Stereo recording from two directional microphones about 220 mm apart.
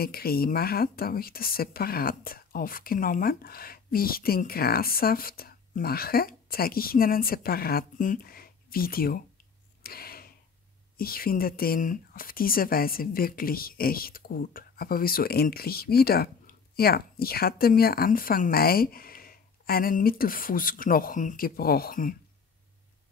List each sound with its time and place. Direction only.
0.0 s speech: 45° left (ahead or behind)
9.8 s a sound: 45° left (ahead or behind)
11.0 s speech: 40° left (ahead or behind)